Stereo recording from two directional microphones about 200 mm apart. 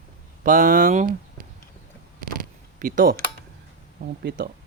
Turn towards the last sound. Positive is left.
turn(degrees=-50)  # may be behind; listen again after turning